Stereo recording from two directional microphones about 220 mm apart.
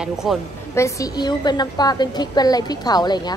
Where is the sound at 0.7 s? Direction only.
15° left (ahead or behind).